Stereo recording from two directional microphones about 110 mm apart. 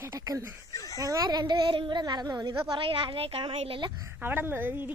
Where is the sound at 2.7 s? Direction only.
50° right (ahead or behind).